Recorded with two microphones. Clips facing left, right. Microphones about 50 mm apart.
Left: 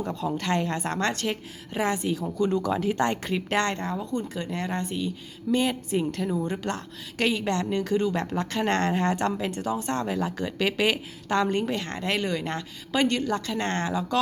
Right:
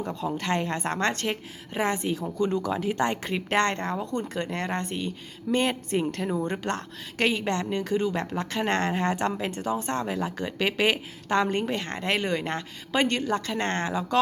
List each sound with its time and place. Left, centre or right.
0.0 s a woman's voice: centre; by 6.0 s right
6.2 s a woman's voice: right
10.0 s a woman's voice: centre